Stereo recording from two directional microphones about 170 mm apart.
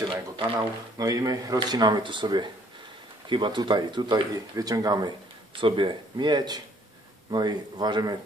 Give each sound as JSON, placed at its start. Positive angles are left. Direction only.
{"t": 0.6, "sound": "speech", "side_deg": -20}